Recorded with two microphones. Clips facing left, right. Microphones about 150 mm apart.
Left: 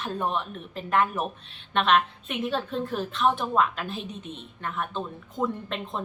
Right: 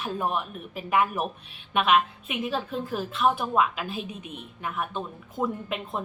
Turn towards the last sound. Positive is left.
turn(degrees=-10)  # may be behind; listen again after turning